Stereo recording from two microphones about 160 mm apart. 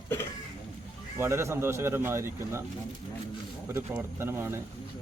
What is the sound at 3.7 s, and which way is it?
Speech, 15° right (ahead or behind).